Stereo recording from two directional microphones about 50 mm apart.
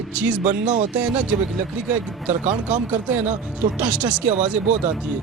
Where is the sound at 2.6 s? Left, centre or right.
Right.